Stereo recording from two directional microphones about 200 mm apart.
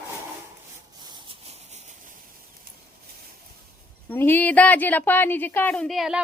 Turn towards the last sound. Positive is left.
turn(degrees=0)  # may be behind; listen again after turning